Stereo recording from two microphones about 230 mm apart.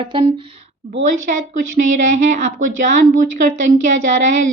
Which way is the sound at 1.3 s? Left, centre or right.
Right.